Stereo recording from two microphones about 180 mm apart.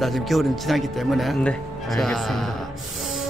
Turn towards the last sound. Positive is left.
turn(degrees=0)  # may be behind; listen again after turning